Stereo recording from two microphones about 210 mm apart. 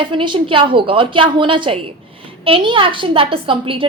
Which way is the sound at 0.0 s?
25° right (ahead or behind).